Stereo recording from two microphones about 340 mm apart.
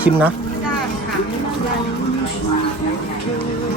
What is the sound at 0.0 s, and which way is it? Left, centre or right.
Speech, centre.